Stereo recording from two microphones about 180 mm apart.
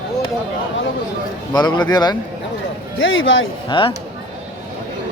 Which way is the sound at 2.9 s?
90° left.